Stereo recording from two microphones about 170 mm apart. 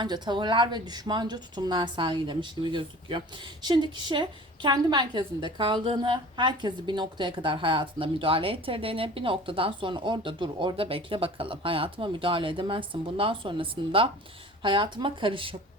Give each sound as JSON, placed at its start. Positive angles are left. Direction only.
{"t": 0.0, "sound": "speech", "side_deg": -25}